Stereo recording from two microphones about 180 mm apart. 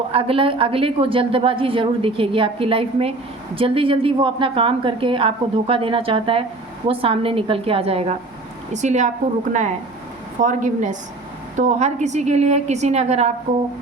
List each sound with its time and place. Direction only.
0.1 s a woman's voice: 30° right (ahead or behind)